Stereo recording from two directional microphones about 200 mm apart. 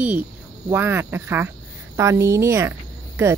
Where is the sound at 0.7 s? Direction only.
10° right (ahead or behind).